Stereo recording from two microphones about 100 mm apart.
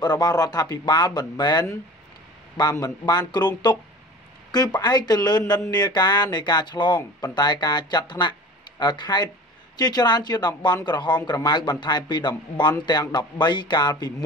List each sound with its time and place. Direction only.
0.0 s speech: 45° left (ahead or behind)
2.7 s speech: 40° left (ahead or behind)